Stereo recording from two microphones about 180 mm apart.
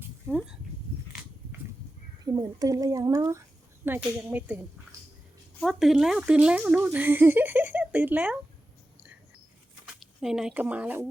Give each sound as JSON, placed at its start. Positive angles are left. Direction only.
{"t": 0.3, "sound": "speech", "side_deg": -5}
{"t": 2.2, "sound": "speech", "side_deg": -20}
{"t": 9.8, "sound": "speech", "side_deg": 0}